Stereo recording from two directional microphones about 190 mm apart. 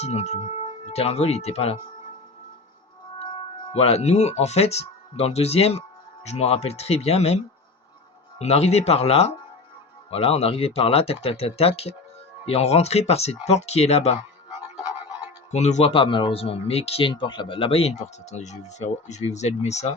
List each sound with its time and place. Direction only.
0.0 s speech: 35° left (ahead or behind)
3.2 s speech: 25° left (ahead or behind)
8.4 s speech: 35° left (ahead or behind)
14.8 s music: 25° left (ahead or behind)
15.5 s speech: 35° left (ahead or behind)